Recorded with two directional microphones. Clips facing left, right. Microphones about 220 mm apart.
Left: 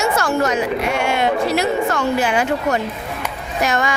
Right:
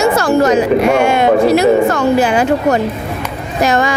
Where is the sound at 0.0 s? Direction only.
35° right (ahead or behind).